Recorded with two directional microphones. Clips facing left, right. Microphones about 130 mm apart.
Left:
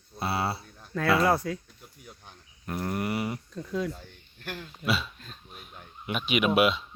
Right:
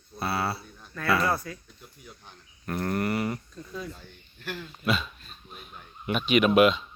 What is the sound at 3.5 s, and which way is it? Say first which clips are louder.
Speech: left 7 dB; 80° left.